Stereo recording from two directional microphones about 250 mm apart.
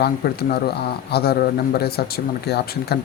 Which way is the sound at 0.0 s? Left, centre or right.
Left.